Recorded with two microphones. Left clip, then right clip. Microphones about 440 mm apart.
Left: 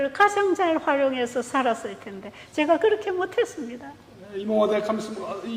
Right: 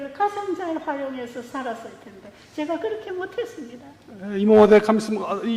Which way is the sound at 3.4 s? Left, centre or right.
Centre.